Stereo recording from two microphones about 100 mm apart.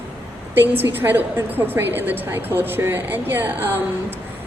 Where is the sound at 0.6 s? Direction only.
20° right (ahead or behind).